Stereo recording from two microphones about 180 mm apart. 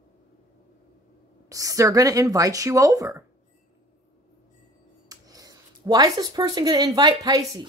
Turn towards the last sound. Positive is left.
turn(degrees=-20)  # may be behind; listen again after turning